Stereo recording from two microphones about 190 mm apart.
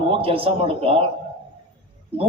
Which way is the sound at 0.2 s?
30° right (ahead or behind).